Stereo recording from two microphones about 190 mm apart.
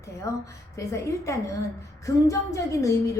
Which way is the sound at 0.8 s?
15° left (ahead or behind).